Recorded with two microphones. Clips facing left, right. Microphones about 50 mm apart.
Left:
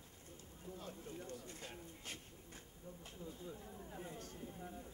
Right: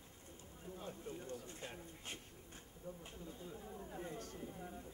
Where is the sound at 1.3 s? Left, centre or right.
Right.